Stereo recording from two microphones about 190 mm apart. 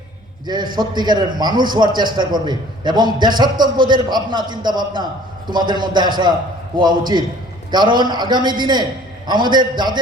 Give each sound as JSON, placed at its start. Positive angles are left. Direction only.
{"t": 0.4, "sound": "a man's voice", "side_deg": -25}